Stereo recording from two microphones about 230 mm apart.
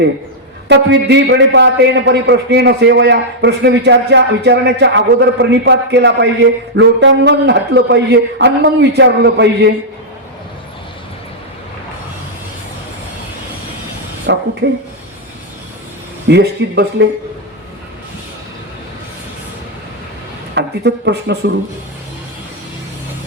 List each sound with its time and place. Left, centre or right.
0.7 s a man's voice: right
14.3 s a sound: right
16.3 s a man's voice: right
20.6 s a man's voice: right